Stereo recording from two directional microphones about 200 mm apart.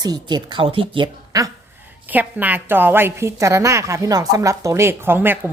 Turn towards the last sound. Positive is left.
turn(degrees=-10)  # may be behind; listen again after turning